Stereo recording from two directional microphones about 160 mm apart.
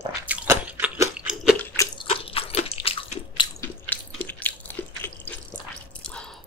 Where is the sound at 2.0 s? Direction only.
35° left (ahead or behind).